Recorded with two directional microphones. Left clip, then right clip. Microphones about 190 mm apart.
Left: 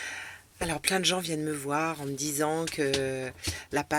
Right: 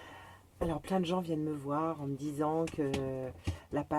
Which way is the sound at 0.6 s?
10° left (ahead or behind).